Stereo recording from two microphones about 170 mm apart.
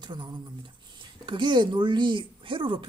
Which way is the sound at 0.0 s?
25° right (ahead or behind).